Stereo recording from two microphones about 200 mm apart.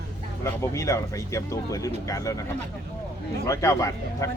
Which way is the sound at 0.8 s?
15° left (ahead or behind).